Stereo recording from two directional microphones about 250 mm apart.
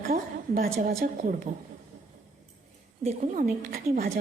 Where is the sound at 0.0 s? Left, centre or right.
Right.